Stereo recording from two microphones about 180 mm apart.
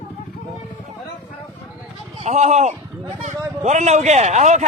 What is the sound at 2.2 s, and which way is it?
A man's voice, 40° right (ahead or behind).